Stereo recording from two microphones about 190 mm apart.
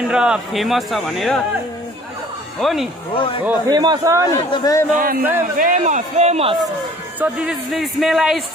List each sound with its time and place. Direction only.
0.1 s a man's voice: 5° right (ahead or behind)
2.6 s a man's voice: centre (ahead or behind)
3.1 s speech: 30° left (ahead or behind)
3.6 s a man's voice: 20° right (ahead or behind)
4.3 s a man's voice: 15° left (ahead or behind)
4.9 s a man's voice: 50° right (ahead or behind); by 6.6 s 30° right (ahead or behind)
7.2 s a man's voice: 5° right (ahead or behind)